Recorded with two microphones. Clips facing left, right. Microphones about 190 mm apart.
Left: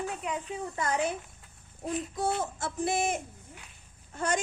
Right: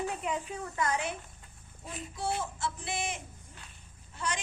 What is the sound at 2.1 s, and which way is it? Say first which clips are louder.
A woman's voice: even; 45° left (ahead or behind).